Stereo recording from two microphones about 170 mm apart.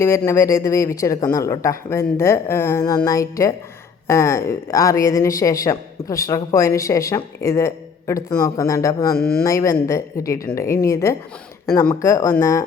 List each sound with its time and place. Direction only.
0.0 s a woman's voice: 15° left (ahead or behind)
9.1 s speech: 65° left (ahead or behind)
9.4 s a woman's voice: 20° left (ahead or behind)